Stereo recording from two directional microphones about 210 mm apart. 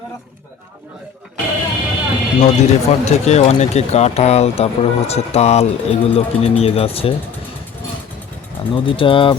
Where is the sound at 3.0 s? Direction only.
30° left (ahead or behind).